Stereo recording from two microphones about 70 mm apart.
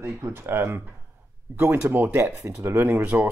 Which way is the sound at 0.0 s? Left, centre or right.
Right.